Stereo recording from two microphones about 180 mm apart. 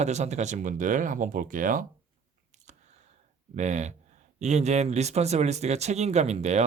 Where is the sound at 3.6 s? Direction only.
40° right (ahead or behind).